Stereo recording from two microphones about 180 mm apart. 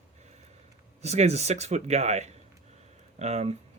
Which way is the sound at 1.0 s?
40° right (ahead or behind).